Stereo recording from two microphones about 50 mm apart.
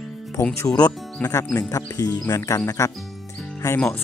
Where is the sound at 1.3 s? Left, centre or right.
Left.